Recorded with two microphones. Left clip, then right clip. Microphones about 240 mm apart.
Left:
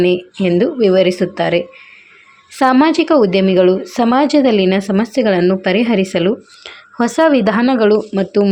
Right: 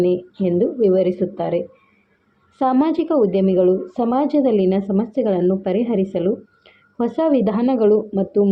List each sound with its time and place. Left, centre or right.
0.0 s a woman's voice: left